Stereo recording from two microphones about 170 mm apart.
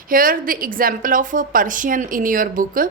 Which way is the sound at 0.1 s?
55° right (ahead or behind).